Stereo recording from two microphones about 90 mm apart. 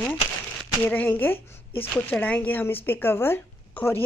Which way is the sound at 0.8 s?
20° left (ahead or behind).